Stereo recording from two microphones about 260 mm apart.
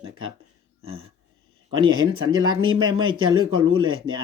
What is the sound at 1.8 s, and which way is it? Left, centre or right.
Speech, centre.